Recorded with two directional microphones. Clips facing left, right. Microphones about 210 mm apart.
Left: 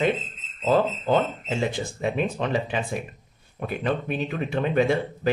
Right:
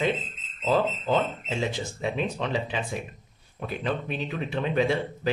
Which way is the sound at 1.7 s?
50° left (ahead or behind).